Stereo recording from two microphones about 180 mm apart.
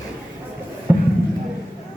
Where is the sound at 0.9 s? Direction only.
10° right (ahead or behind).